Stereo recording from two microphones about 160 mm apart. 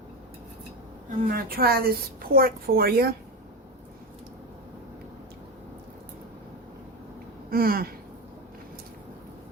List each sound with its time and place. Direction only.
1.2 s a woman's voice: 65° right (ahead or behind)
7.5 s a woman's voice: 70° right (ahead or behind)